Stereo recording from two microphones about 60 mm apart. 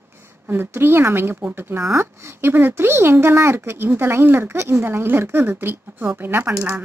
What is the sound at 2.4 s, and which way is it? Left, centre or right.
A woman's voice, right.